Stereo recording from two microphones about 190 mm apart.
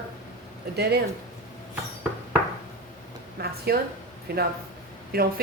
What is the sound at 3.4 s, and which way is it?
A woman's voice, 55° right (ahead or behind).